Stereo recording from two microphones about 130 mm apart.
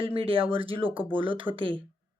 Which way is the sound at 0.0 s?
45° right (ahead or behind).